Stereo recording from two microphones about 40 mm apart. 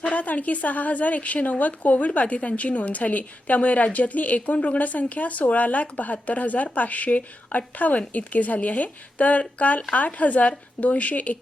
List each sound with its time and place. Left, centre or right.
0.0 s a woman's voice: left